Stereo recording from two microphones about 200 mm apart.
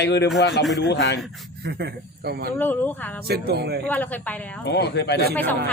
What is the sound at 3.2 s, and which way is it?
Speech, 50° right (ahead or behind).